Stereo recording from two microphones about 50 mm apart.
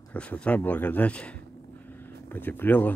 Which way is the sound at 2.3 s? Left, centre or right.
Left.